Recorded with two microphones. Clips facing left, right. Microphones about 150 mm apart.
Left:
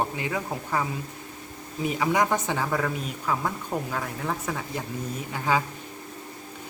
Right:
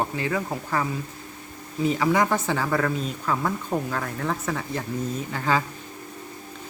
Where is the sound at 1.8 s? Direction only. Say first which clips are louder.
Right 2 dB; 15° left (ahead or behind).